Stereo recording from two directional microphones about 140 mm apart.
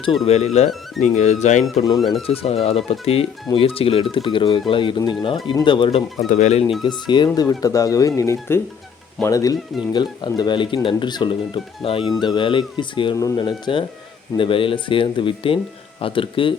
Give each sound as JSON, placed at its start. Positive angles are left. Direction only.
{"t": 0.3, "sound": "speech", "side_deg": 50}
{"t": 0.7, "sound": "speech", "side_deg": 0}
{"t": 1.1, "sound": "speech", "side_deg": 60}
{"t": 2.0, "sound": "speech", "side_deg": 0}
{"t": 2.2, "sound": "speech", "side_deg": 45}
{"t": 6.2, "sound": "speech", "side_deg": 60}
{"t": 6.8, "sound": "speech", "side_deg": 30}
{"t": 14.3, "sound": "speech", "side_deg": 40}